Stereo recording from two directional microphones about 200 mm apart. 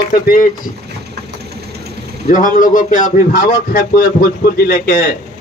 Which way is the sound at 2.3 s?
40° left (ahead or behind).